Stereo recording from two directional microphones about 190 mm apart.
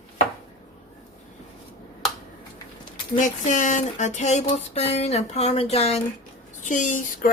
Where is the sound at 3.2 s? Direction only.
40° left (ahead or behind).